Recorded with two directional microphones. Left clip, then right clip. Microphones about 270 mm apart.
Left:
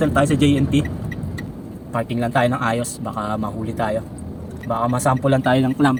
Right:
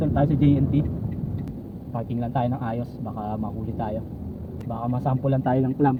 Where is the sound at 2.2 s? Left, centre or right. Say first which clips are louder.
Left 9 dB; left.